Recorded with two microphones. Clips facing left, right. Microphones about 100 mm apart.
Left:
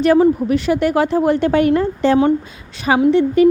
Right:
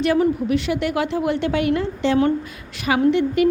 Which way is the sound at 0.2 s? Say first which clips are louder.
Left 5 dB; 40° left (ahead or behind).